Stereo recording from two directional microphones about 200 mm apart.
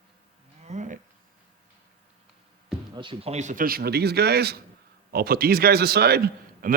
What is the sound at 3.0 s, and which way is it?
A man's voice, 25° right (ahead or behind).